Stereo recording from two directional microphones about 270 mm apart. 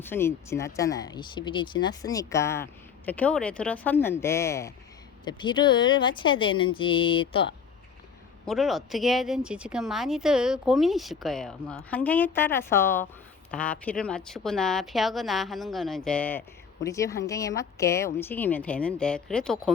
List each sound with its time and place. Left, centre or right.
0.0 s speech: centre
8.4 s speech: centre